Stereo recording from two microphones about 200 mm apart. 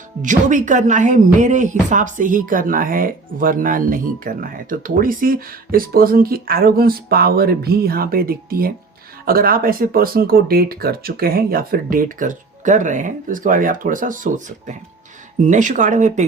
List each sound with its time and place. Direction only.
0.2 s speech: 40° right (ahead or behind)